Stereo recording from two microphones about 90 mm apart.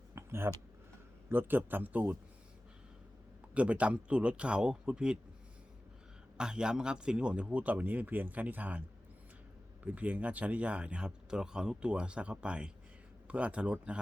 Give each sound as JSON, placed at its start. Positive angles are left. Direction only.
{"t": 0.1, "sound": "a sound", "side_deg": -30}
{"t": 1.3, "sound": "a man's voice", "side_deg": -25}
{"t": 3.5, "sound": "speech", "side_deg": -15}
{"t": 6.3, "sound": "speech", "side_deg": -10}
{"t": 9.8, "sound": "speech", "side_deg": -15}